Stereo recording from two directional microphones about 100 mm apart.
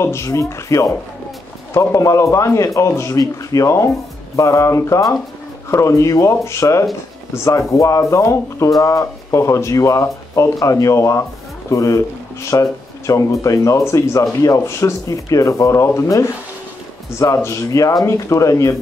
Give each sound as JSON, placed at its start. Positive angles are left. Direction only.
{"t": 0.0, "sound": "speech", "side_deg": 30}